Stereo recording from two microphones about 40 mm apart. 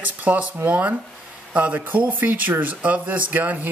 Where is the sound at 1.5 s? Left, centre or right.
Right.